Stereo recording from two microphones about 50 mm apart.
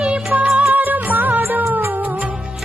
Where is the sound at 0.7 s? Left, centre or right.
Right.